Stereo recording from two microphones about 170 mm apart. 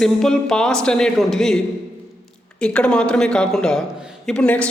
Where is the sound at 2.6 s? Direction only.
5° left (ahead or behind).